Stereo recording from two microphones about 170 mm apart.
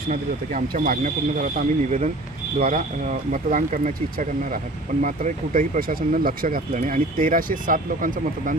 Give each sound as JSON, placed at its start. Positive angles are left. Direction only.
{"t": 0.1, "sound": "speech", "side_deg": -55}